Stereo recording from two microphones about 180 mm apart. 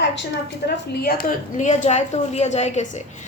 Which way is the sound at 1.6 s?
40° left (ahead or behind).